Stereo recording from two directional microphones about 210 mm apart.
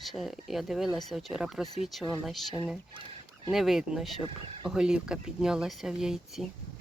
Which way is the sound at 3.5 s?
Centre (ahead or behind).